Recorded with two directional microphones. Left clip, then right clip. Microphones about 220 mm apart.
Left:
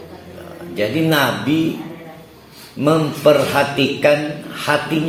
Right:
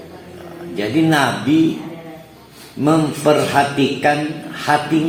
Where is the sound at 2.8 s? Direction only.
35° left (ahead or behind).